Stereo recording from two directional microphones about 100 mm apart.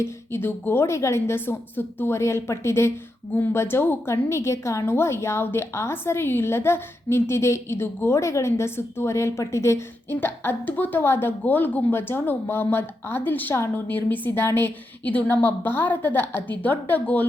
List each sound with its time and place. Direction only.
0.0 s a woman's voice: 25° left (ahead or behind)